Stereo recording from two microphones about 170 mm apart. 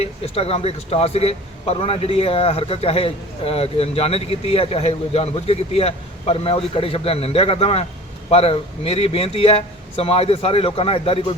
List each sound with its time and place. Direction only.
0.0 s a man's voice: 35° left (ahead or behind)